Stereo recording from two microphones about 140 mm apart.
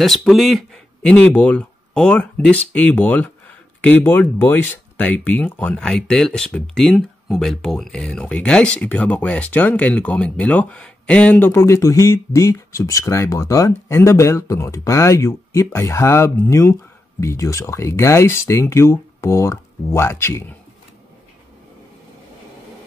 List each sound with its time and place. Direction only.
0.0 s speech: centre (ahead or behind); by 20.5 s 15° left (ahead or behind)